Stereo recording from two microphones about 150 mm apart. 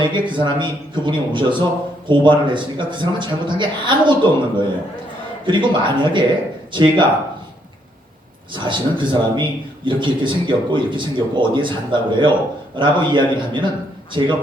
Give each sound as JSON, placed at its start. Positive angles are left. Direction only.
{"t": 0.0, "sound": "a man's voice", "side_deg": -30}
{"t": 8.5, "sound": "a man's voice", "side_deg": -30}